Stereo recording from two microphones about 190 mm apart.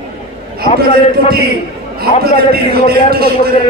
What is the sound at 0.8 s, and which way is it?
A man's voice, 55° right (ahead or behind).